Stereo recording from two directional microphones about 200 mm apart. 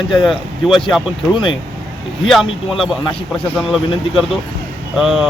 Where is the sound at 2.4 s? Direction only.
25° left (ahead or behind).